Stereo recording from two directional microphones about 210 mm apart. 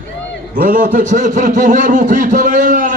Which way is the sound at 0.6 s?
40° right (ahead or behind).